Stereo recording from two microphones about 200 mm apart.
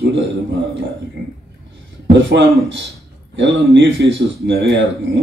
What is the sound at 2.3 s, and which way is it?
Speech, 65° right (ahead or behind).